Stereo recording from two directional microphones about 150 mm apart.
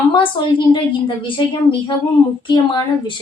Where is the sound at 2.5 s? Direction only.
30° left (ahead or behind).